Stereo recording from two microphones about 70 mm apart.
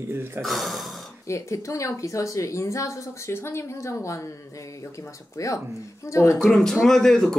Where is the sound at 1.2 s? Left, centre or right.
Left.